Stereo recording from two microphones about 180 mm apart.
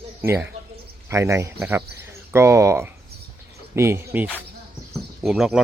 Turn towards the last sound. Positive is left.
turn(degrees=-5)  # may be behind; listen again after turning